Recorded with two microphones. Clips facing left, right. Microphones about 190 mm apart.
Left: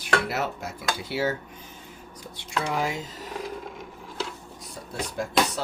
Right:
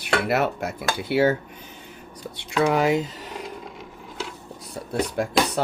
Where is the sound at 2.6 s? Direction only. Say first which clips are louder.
Right 9 dB; 65° right (ahead or behind).